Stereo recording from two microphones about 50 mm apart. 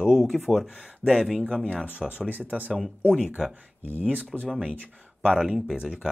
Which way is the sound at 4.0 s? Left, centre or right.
Left.